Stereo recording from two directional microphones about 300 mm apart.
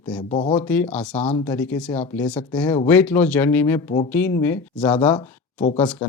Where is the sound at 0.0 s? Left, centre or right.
Centre.